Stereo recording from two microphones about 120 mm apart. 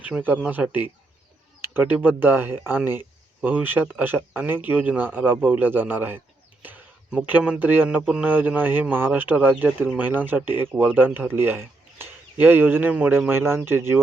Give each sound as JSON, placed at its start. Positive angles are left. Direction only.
{"t": 0.2, "sound": "speech", "side_deg": -15}